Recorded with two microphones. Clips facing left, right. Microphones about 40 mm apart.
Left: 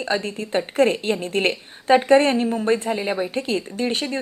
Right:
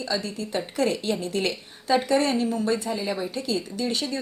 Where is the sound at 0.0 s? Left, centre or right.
Left.